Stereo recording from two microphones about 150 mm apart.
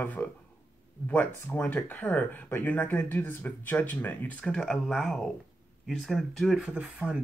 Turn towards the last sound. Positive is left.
turn(degrees=-5)  # may be behind; listen again after turning